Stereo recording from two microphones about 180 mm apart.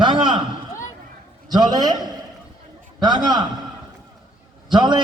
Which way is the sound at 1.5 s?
25° right (ahead or behind).